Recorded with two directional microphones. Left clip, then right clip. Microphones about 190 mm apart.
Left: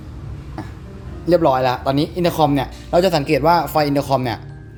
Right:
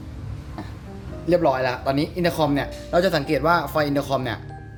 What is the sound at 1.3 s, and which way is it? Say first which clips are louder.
Speech: left 5 dB; 25° left (ahead or behind).